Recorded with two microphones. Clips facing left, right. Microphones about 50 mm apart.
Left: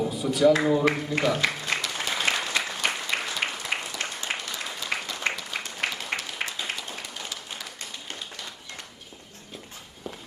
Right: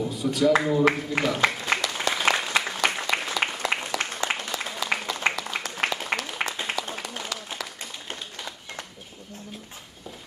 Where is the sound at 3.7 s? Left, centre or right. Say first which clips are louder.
Right 2 dB; right.